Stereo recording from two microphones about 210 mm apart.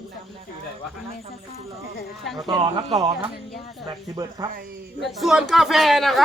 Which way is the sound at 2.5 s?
20° right (ahead or behind).